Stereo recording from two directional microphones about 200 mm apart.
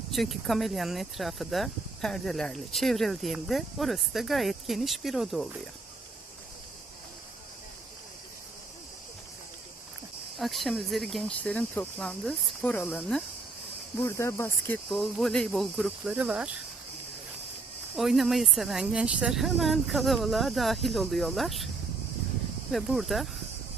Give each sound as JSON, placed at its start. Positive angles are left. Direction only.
{"t": 0.1, "sound": "speech", "side_deg": 0}
{"t": 10.3, "sound": "speech", "side_deg": 0}
{"t": 17.9, "sound": "speech", "side_deg": 0}
{"t": 22.7, "sound": "speech", "side_deg": 0}